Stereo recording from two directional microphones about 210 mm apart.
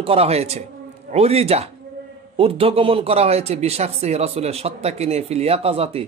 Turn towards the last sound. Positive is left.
turn(degrees=-30)  # may be behind; listen again after turning